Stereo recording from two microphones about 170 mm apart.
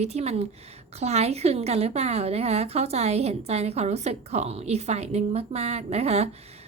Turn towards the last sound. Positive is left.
turn(degrees=-40)  # may be behind; listen again after turning